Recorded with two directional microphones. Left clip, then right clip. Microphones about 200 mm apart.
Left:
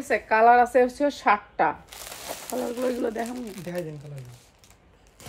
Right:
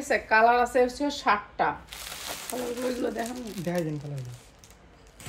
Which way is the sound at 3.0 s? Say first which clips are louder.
Left 2 dB; 30° left (ahead or behind).